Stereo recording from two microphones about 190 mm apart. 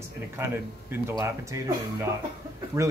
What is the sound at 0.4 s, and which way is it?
Speech, 10° right (ahead or behind).